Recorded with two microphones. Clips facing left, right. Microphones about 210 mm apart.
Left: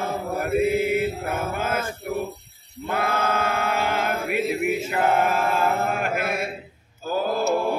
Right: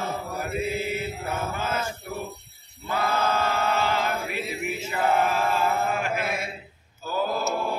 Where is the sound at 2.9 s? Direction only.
55° left (ahead or behind).